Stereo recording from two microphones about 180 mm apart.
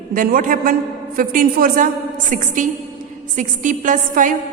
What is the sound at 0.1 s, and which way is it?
Speech, 50° right (ahead or behind).